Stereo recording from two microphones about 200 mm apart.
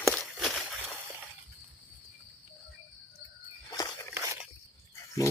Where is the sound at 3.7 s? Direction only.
15° left (ahead or behind).